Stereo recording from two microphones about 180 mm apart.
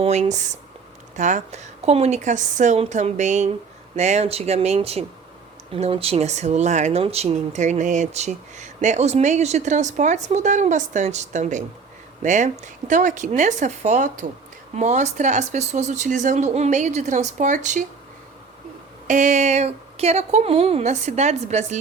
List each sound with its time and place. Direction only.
0.0 s speech: 40° right (ahead or behind)
19.0 s speech: 45° right (ahead or behind)